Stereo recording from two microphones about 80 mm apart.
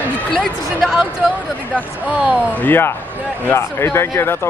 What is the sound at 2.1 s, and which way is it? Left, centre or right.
Speech, centre.